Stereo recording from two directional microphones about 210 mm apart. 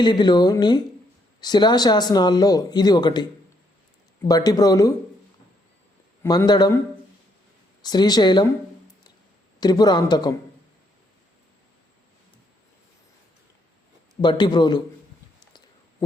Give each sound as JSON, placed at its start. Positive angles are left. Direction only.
{"t": 0.0, "sound": "speech", "side_deg": 20}
{"t": 4.3, "sound": "speech", "side_deg": 20}
{"t": 6.2, "sound": "speech", "side_deg": 20}
{"t": 7.8, "sound": "speech", "side_deg": 20}
{"t": 9.6, "sound": "speech", "side_deg": 20}
{"t": 14.2, "sound": "speech", "side_deg": 20}